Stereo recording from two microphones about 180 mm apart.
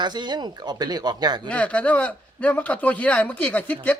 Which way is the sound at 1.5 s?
5° left (ahead or behind).